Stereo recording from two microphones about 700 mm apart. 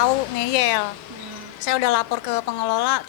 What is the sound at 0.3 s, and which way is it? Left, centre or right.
Speech, left.